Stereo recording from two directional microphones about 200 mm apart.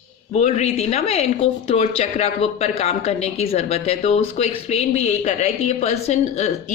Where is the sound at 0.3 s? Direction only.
35° left (ahead or behind).